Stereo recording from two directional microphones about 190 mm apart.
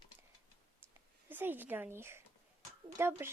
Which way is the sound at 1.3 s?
10° right (ahead or behind).